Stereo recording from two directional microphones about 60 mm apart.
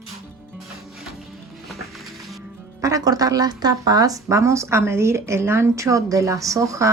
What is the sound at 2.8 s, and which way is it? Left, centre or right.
Speech, right.